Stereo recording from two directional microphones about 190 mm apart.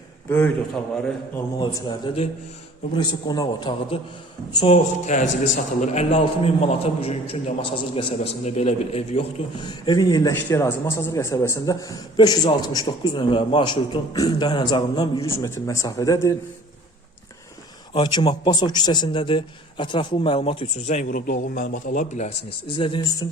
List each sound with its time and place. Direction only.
0.3 s a man's voice: 10° left (ahead or behind)
1.5 s a man's voice: 20° left (ahead or behind)
17.9 s a man's voice: 25° left (ahead or behind)